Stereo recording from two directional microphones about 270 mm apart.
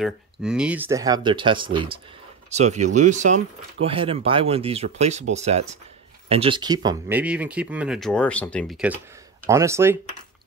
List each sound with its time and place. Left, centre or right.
0.0 s speech: centre